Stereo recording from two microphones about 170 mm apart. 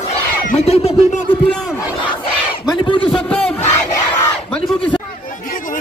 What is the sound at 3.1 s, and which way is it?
Battle cry, 5° left (ahead or behind).